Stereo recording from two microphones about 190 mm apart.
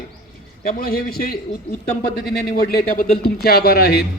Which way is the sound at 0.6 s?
50° left (ahead or behind).